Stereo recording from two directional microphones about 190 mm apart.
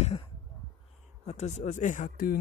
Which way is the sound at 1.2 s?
40° left (ahead or behind).